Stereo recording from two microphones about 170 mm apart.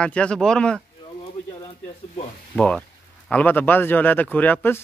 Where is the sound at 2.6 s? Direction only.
5° left (ahead or behind).